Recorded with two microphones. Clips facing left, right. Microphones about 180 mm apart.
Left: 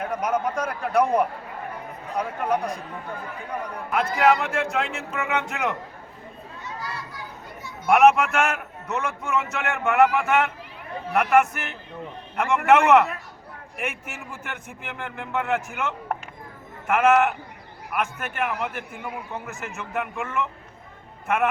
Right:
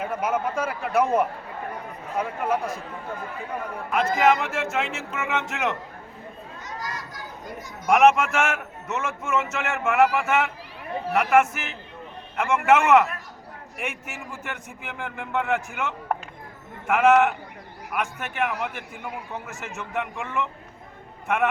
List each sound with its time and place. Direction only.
0.0 s a man's voice: 5° right (ahead or behind)
3.9 s a man's voice: centre (ahead or behind)
6.7 s children playing: 40° right (ahead or behind)
7.9 s a man's voice: centre (ahead or behind)